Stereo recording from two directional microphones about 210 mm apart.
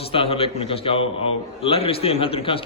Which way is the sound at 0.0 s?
25° left (ahead or behind).